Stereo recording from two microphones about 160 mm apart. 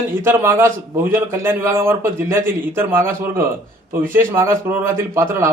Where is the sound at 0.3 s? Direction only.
15° right (ahead or behind).